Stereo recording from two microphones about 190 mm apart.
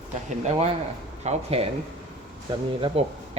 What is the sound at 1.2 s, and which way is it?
Speech, 35° right (ahead or behind).